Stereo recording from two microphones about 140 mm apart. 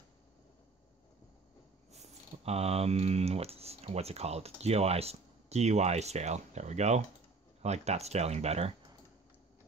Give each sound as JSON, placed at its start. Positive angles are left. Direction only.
{"t": 2.4, "sound": "speech", "side_deg": -50}